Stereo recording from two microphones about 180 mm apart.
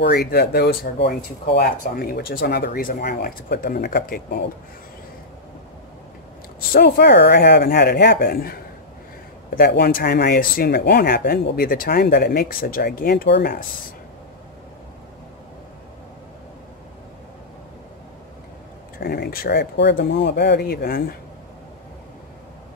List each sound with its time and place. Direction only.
0.3 s speech: 60° left (ahead or behind)
6.7 s speech: 60° left (ahead or behind)
9.6 s speech: 55° left (ahead or behind)
18.9 s speech: 55° left (ahead or behind)